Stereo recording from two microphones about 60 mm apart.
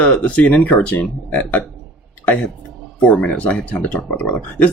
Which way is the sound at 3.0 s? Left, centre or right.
Left.